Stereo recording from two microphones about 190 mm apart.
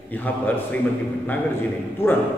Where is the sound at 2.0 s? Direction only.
15° left (ahead or behind).